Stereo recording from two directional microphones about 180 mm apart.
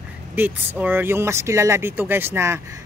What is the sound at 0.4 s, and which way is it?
Speech, 10° right (ahead or behind).